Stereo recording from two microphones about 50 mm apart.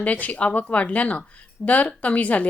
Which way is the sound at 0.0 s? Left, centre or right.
Left.